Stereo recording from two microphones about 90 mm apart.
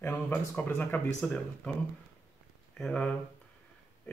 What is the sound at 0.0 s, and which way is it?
Speech, 20° left (ahead or behind).